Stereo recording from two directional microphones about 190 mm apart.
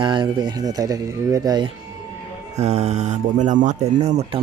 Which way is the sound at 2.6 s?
35° right (ahead or behind).